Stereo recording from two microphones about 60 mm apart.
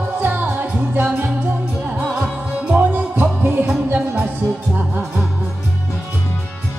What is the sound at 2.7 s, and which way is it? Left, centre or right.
Music, right.